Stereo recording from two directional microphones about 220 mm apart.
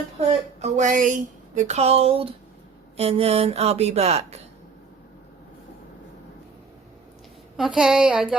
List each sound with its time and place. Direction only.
0.6 s speech: 35° right (ahead or behind)
7.5 s a woman's voice: centre (ahead or behind)